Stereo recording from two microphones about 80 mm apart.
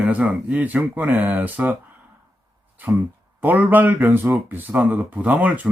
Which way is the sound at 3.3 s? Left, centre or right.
Right.